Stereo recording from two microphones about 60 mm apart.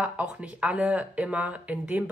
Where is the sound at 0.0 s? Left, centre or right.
Right.